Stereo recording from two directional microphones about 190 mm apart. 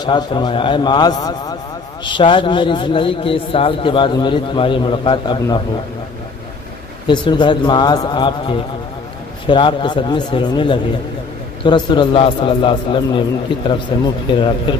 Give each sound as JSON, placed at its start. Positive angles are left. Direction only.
{"t": 0.0, "sound": "a man's voice", "side_deg": 25}
{"t": 7.1, "sound": "a man's voice", "side_deg": 25}